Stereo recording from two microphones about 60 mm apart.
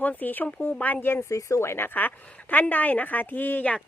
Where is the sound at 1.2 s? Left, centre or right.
Left.